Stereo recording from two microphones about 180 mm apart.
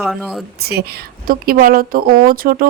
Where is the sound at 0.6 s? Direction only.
60° right (ahead or behind).